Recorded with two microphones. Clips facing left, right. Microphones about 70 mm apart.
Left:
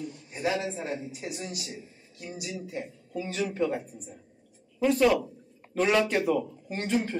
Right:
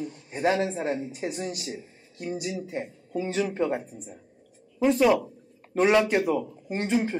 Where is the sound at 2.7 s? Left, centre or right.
Right.